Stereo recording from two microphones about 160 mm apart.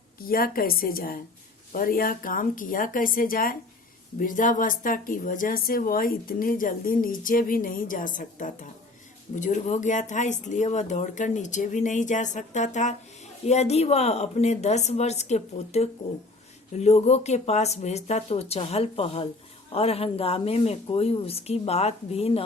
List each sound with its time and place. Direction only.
0.2 s a woman's voice: 65° left (ahead or behind); by 22.4 s 40° left (ahead or behind)